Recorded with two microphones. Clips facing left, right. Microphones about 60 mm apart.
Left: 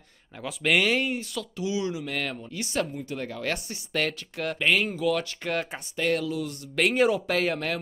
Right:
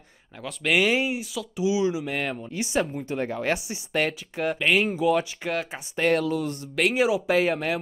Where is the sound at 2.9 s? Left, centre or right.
Right.